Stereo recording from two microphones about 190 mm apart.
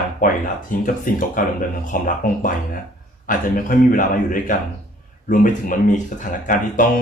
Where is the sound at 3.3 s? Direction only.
45° left (ahead or behind).